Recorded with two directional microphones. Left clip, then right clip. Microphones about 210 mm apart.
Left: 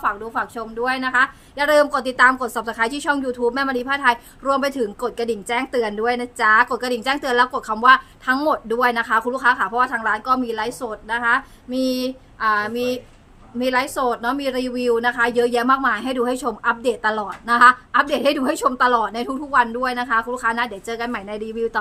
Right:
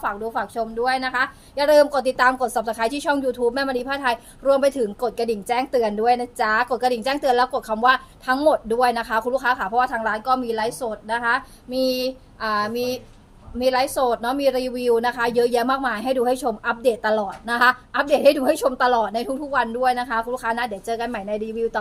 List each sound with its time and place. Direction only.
0.0 s a woman's voice: 15° left (ahead or behind)